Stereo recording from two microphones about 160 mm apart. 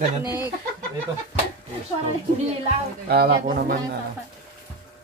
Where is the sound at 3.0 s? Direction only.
75° right (ahead or behind).